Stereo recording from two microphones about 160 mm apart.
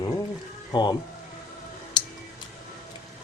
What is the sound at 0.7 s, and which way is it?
Speech, 30° left (ahead or behind).